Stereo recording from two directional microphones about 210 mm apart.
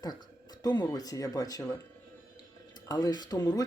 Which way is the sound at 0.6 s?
15° left (ahead or behind).